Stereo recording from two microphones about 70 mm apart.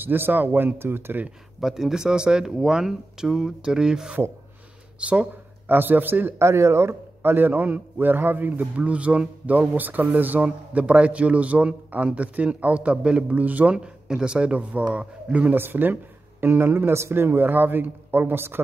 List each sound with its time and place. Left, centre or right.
0.0 s a man's voice: right
1.6 s a man's voice: centre
15.5 s speech: right